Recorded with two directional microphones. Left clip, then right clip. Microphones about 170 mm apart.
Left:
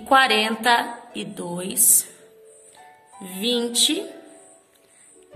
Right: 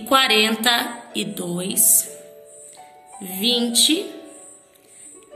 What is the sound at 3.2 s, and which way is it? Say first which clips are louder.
Music: right 3 dB; 55° left (ahead or behind).